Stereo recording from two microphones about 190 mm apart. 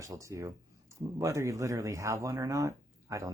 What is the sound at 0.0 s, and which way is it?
Speech, 15° right (ahead or behind).